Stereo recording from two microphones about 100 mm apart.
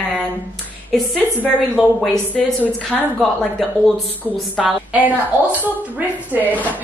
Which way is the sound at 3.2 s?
5° left (ahead or behind).